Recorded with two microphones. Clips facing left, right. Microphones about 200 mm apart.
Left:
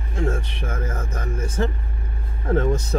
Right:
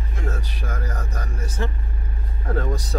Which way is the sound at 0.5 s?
25° left (ahead or behind).